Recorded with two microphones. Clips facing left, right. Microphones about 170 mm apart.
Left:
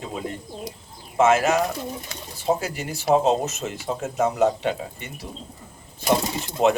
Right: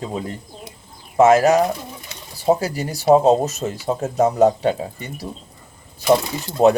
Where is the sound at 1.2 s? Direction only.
40° right (ahead or behind).